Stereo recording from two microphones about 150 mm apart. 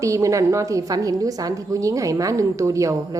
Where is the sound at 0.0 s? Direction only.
20° right (ahead or behind).